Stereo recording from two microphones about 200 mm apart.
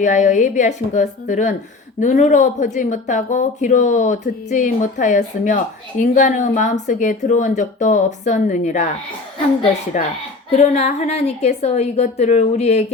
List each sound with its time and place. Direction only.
0.0 s speech: 40° left (ahead or behind)
9.9 s speech: 35° left (ahead or behind)